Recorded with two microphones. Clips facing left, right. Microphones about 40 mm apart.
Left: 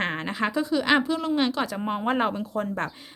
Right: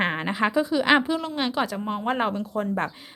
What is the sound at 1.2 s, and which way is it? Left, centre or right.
Speech, centre.